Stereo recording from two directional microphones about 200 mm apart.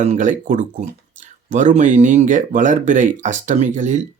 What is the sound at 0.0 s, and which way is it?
Speech, 35° right (ahead or behind).